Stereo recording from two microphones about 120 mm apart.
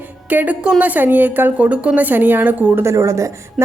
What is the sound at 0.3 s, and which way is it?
A woman's voice, 15° right (ahead or behind).